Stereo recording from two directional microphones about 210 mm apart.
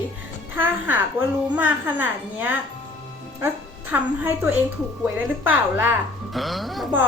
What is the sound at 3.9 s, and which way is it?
A woman's voice, 10° right (ahead or behind).